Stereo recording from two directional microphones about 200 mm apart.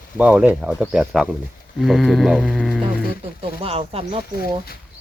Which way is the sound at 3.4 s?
30° right (ahead or behind).